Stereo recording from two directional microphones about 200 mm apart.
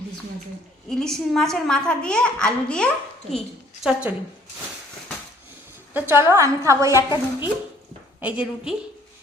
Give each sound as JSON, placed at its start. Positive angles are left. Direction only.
{"t": 0.9, "sound": "a child's voice", "side_deg": 0}
{"t": 5.9, "sound": "a woman's voice", "side_deg": -10}
{"t": 7.1, "sound": "a woman's voice", "side_deg": 20}
{"t": 8.2, "sound": "a woman's voice", "side_deg": -5}